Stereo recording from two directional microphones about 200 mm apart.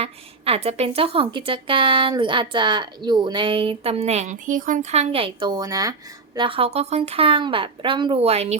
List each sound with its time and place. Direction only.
0.0 s a woman's voice: 30° right (ahead or behind)